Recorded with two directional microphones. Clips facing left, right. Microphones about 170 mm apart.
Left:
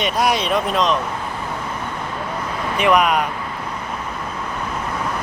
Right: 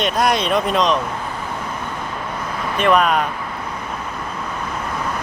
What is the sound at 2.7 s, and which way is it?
Speech, 10° left (ahead or behind).